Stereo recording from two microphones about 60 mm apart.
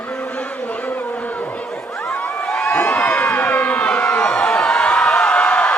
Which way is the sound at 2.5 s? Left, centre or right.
Centre.